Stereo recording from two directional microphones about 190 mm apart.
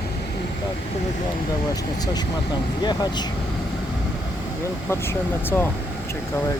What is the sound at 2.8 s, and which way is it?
Speech, 20° left (ahead or behind).